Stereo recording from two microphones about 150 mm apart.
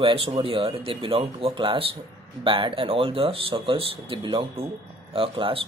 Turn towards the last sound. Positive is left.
turn(degrees=-35)  # may be behind; listen again after turning